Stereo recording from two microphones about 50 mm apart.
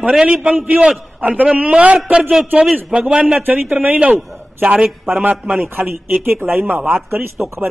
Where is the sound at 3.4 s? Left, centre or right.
Right.